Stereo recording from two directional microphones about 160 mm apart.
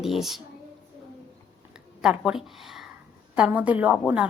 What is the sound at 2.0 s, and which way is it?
A woman's voice, 5° right (ahead or behind).